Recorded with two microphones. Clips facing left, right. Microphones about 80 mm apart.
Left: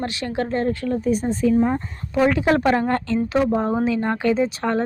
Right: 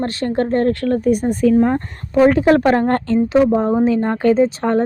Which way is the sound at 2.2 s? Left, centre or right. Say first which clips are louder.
Right 5 dB; right.